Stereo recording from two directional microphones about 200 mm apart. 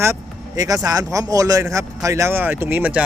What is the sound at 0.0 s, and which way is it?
Speech, 15° right (ahead or behind).